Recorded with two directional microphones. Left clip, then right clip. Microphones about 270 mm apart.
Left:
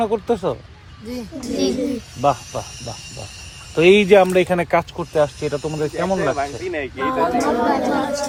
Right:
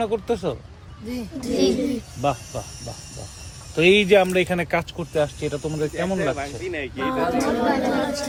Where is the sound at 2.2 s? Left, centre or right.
Centre.